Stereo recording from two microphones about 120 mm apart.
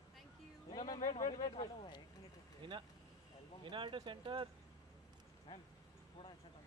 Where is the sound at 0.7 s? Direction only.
40° left (ahead or behind).